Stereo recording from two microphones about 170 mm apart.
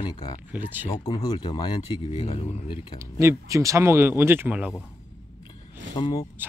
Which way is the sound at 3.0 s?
15° right (ahead or behind).